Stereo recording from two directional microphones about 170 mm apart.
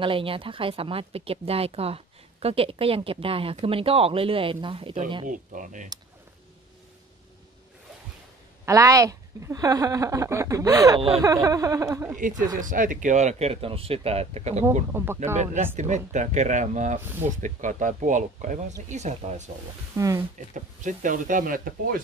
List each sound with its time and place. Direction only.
0.0 s speech: 30° right (ahead or behind)
5.2 s speech: 50° right (ahead or behind)
8.6 s speech: 20° right (ahead or behind)
12.5 s speech: 50° right (ahead or behind)
14.9 s speech: 15° right (ahead or behind)
15.3 s speech: 45° right (ahead or behind)
17.0 s speech: 10° right (ahead or behind)
17.4 s speech: 50° right (ahead or behind)
20.0 s speech: 20° right (ahead or behind)
20.3 s speech: 45° right (ahead or behind)